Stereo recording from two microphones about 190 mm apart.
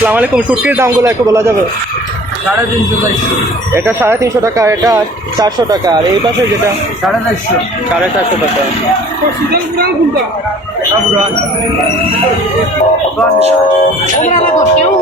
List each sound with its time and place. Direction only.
0.0 s speech: 10° right (ahead or behind)
3.8 s speech: 10° right (ahead or behind)
9.5 s a woman's voice: 55° right (ahead or behind)
14.2 s speech: 35° left (ahead or behind)